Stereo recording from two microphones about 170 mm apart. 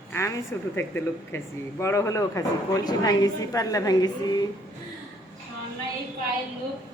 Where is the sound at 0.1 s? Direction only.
15° left (ahead or behind).